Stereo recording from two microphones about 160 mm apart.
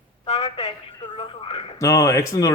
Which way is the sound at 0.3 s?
25° left (ahead or behind).